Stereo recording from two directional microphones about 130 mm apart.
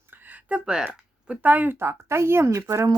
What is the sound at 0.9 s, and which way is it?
Speech, 10° right (ahead or behind).